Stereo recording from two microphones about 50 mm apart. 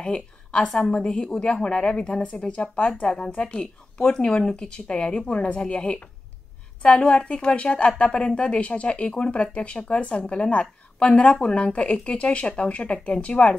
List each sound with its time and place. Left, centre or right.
0.0 s speech: left
2.5 s speech: left